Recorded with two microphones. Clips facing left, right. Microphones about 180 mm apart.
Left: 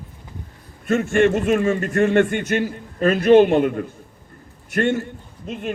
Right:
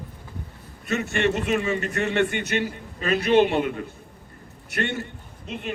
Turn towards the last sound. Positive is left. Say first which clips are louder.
# left 5 dB
turn(degrees=45)  # may be behind; listen again after turning